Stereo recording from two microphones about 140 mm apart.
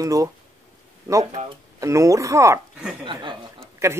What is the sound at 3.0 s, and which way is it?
Speech, 35° right (ahead or behind).